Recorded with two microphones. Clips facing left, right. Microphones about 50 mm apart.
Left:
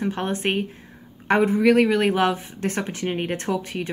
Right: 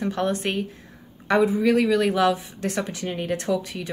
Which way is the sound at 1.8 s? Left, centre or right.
Left.